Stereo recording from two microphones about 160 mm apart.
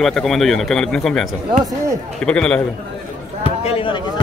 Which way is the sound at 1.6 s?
20° right (ahead or behind).